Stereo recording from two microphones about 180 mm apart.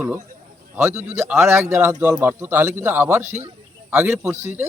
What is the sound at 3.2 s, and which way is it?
Speech, 40° right (ahead or behind).